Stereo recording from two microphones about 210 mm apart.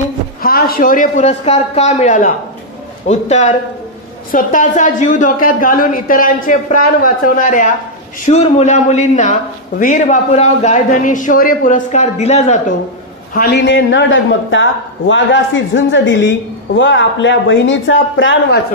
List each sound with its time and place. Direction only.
0.4 s a man's voice: 45° left (ahead or behind)
13.3 s speech: 50° left (ahead or behind)